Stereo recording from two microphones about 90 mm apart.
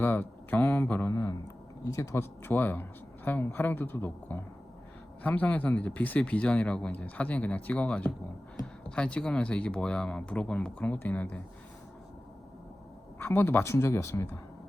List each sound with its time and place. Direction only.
0.0 s a sound: 25° left (ahead or behind)
1.1 s speech: 35° left (ahead or behind)
13.1 s speech: 25° left (ahead or behind)